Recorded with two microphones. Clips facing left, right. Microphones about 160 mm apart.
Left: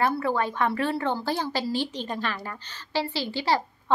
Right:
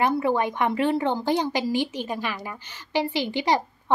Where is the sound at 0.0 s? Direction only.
15° right (ahead or behind).